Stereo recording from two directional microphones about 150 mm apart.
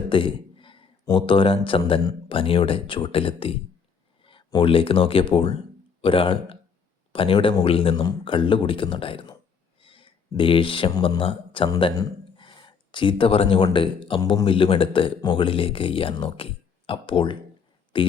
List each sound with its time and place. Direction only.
0.1 s a man's voice: 35° left (ahead or behind)
11.9 s a sound: 30° left (ahead or behind)
13.7 s speech: 35° left (ahead or behind)